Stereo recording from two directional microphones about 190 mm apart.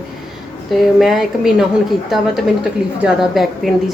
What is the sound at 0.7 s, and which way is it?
Speech, centre (ahead or behind).